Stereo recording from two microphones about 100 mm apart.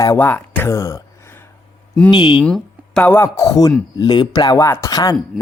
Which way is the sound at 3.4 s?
35° left (ahead or behind).